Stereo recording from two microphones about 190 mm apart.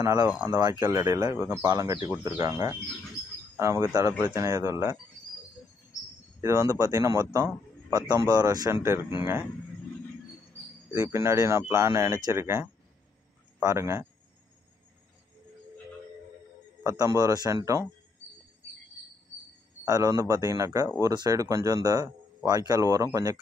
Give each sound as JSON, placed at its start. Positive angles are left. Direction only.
{"t": 0.0, "sound": "speech", "side_deg": -15}
{"t": 6.4, "sound": "speech", "side_deg": -15}
{"t": 10.9, "sound": "speech", "side_deg": -15}
{"t": 16.8, "sound": "speech", "side_deg": -20}
{"t": 19.8, "sound": "speech", "side_deg": -20}